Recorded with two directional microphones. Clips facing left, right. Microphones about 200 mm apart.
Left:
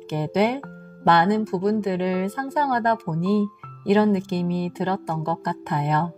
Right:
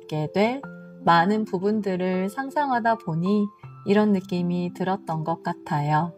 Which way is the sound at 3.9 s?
50° left (ahead or behind).